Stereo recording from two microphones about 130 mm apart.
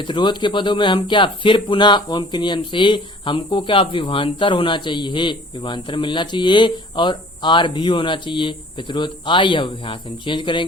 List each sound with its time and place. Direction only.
0.0 s speech: 35° left (ahead or behind)